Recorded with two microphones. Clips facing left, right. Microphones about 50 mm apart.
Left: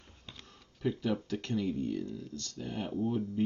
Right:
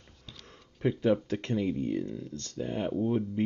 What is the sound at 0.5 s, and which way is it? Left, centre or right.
Speech, right.